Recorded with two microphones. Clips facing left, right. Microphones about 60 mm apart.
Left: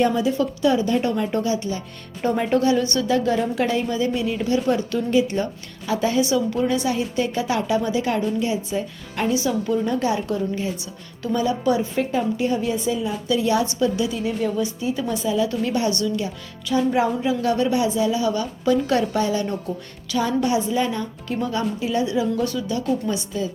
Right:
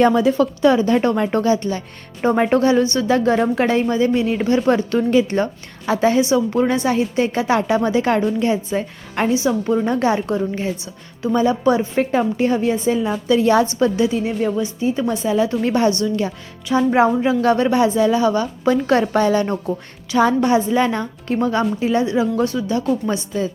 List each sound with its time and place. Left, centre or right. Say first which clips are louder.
0.0 s a woman's voice: right 5 dB; right
9.3 s a woman's voice: right 3 dB; right
15.9 s speech: right 4 dB; right
16.6 s a woman's voice: right 5 dB; right